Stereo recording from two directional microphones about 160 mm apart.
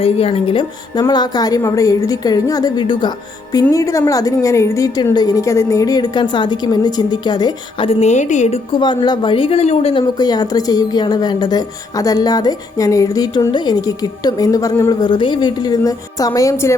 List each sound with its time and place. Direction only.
0.0 s a woman's voice: 35° left (ahead or behind)
8.8 s speech: 30° left (ahead or behind)
10.0 s a woman's voice: 25° left (ahead or behind)